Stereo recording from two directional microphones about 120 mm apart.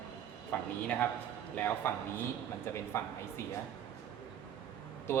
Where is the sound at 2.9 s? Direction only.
20° left (ahead or behind).